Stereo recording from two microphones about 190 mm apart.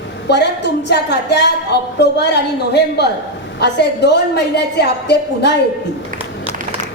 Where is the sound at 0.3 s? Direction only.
65° left (ahead or behind).